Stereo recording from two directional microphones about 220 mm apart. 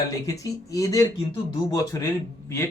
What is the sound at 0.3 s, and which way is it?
Speech, 15° left (ahead or behind).